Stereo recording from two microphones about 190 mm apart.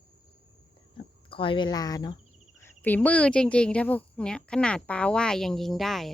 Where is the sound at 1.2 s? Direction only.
25° left (ahead or behind).